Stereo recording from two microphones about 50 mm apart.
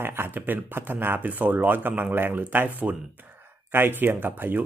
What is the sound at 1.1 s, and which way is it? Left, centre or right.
A man's voice, right.